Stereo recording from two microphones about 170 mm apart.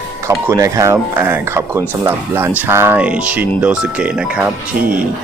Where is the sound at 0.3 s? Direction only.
15° right (ahead or behind).